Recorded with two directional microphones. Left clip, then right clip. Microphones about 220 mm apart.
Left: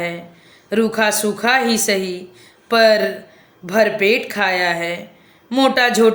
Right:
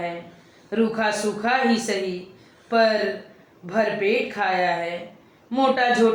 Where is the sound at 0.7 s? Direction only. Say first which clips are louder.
Left 6 dB; 55° left (ahead or behind).